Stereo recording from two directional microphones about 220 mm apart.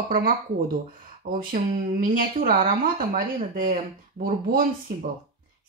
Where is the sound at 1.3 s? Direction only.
40° right (ahead or behind).